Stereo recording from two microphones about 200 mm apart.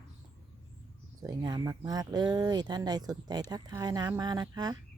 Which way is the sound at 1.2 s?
20° right (ahead or behind).